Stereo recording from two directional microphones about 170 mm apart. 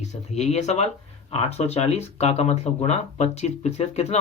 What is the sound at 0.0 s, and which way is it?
Speech, 40° left (ahead or behind).